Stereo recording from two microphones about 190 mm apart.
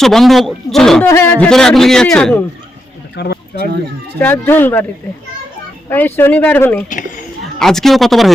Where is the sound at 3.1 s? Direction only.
60° left (ahead or behind).